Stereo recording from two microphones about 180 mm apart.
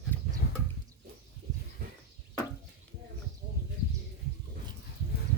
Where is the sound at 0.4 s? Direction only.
50° left (ahead or behind).